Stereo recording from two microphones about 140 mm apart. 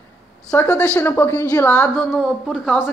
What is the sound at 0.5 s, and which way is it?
A woman's voice, 15° left (ahead or behind).